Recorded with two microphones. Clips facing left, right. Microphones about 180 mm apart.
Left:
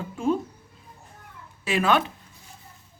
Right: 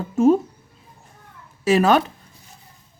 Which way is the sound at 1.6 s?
40° right (ahead or behind).